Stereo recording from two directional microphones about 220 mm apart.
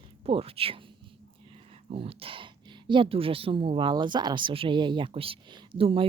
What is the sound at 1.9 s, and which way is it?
A woman's voice, 25° right (ahead or behind).